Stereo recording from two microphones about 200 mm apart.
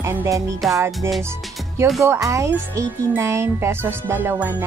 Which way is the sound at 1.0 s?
15° right (ahead or behind).